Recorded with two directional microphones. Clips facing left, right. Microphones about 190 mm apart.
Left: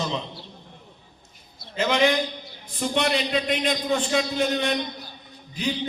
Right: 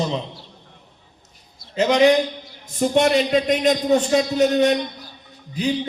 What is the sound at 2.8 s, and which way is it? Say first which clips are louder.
A man's voice: right 7 dB; 45° right (ahead or behind).